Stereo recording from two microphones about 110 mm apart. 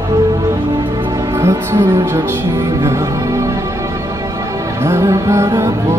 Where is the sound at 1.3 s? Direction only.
25° right (ahead or behind).